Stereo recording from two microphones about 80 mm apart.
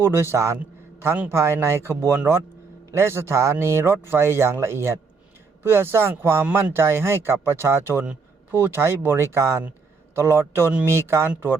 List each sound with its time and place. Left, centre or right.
0.0 s a man's voice: right
8.0 s a sound: centre
8.5 s a man's voice: right